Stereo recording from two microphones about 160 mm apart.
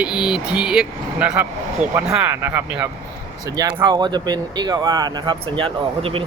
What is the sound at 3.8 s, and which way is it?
Speech, 25° right (ahead or behind).